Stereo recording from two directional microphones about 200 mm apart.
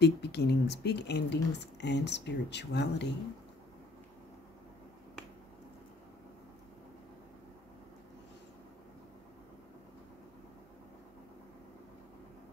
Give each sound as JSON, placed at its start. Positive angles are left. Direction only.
{"t": 0.0, "sound": "speech", "side_deg": 55}